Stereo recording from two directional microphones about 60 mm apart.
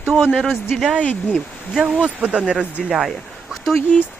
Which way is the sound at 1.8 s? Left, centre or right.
Centre.